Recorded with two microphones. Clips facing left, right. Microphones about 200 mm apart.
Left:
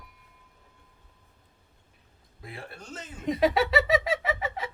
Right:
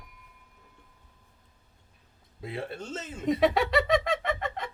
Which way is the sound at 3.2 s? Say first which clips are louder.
Even; centre (ahead or behind).